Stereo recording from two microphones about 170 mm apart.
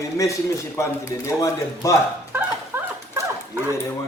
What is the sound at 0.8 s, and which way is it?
A man's voice, 15° left (ahead or behind).